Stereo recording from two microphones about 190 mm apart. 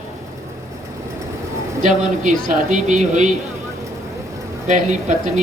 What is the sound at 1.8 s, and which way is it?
Speech, 40° right (ahead or behind).